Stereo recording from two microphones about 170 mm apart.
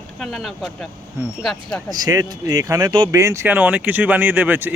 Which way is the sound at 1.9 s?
20° right (ahead or behind).